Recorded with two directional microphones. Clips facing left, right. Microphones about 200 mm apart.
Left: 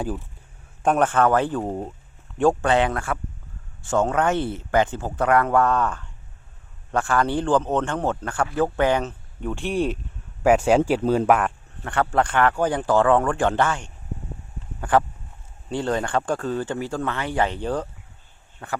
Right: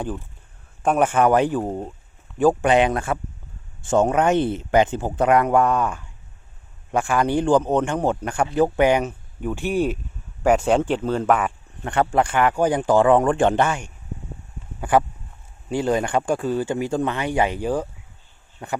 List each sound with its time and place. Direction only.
0.8 s a man's voice: 5° right (ahead or behind)
1.6 s speech: centre (ahead or behind)
2.6 s a man's voice: 15° right (ahead or behind); by 11.3 s 10° left (ahead or behind)
11.8 s a man's voice: 15° right (ahead or behind)